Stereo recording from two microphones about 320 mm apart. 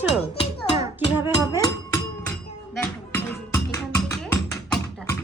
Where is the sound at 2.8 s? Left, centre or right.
Centre.